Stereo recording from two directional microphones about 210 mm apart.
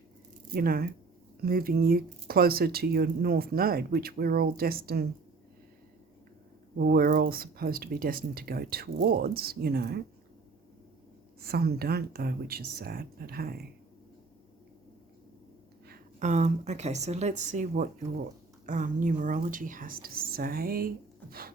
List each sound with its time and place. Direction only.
0.5 s speech: 45° right (ahead or behind)
6.7 s speech: 45° right (ahead or behind)
11.3 s speech: 45° right (ahead or behind)
15.9 s a woman's voice: 35° right (ahead or behind)